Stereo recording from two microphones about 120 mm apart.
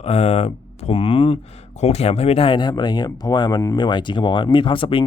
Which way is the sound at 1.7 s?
65° left (ahead or behind).